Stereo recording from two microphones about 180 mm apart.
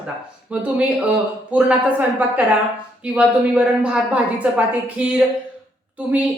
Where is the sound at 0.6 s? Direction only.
5° right (ahead or behind).